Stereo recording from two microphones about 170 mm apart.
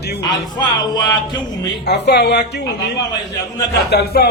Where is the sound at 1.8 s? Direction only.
75° left (ahead or behind).